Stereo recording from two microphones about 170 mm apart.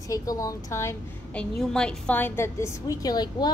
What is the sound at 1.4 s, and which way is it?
A woman's voice, 5° left (ahead or behind).